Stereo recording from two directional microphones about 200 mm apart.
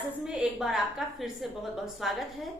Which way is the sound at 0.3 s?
5° right (ahead or behind).